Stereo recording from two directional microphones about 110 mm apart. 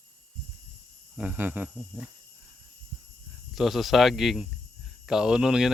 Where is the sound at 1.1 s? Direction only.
15° right (ahead or behind).